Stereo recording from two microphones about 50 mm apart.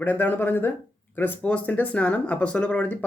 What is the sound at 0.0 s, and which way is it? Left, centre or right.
Speech, left.